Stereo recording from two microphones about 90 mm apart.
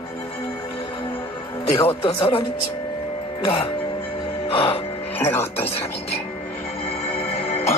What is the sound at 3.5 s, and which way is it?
Speech, 70° left (ahead or behind).